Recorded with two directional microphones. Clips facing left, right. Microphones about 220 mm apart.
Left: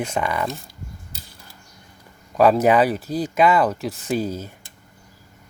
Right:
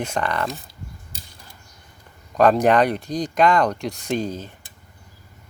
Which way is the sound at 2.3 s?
5° left (ahead or behind).